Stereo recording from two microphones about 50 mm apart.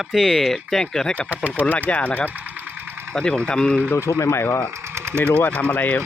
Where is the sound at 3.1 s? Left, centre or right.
Centre.